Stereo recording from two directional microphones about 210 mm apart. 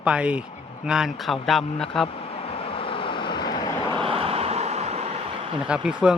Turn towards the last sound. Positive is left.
turn(degrees=-5)  # may be behind; listen again after turning